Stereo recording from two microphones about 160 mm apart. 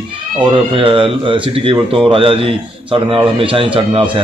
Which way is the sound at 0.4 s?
30° right (ahead or behind).